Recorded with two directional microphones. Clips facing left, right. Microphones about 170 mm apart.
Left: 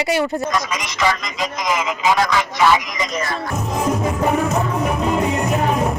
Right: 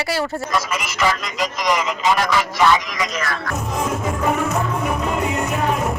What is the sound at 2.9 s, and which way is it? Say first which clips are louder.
Speech: left 1 dB; 25° left (ahead or behind).